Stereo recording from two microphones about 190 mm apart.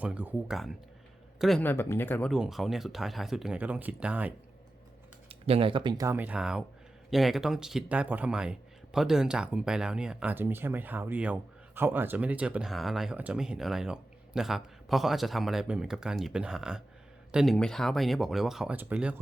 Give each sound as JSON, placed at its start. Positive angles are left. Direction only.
{"t": 0.0, "sound": "speech", "side_deg": -5}
{"t": 2.3, "sound": "speech", "side_deg": 0}
{"t": 5.3, "sound": "speech", "side_deg": -30}